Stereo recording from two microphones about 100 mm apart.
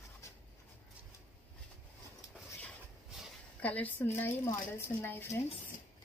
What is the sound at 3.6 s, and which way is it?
A woman's voice, 15° left (ahead or behind).